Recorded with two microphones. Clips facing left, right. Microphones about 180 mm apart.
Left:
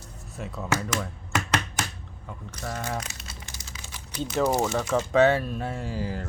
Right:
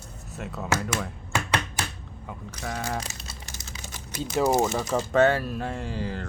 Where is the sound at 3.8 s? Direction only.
45° right (ahead or behind).